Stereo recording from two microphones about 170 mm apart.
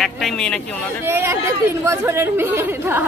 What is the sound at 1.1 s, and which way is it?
Speech, 15° right (ahead or behind).